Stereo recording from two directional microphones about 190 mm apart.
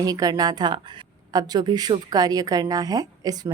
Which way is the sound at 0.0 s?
20° right (ahead or behind).